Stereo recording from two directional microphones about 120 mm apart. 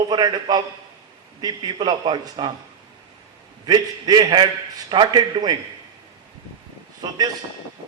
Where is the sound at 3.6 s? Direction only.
35° right (ahead or behind).